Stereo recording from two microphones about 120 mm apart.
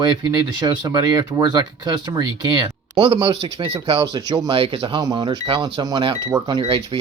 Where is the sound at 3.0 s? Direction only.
45° right (ahead or behind).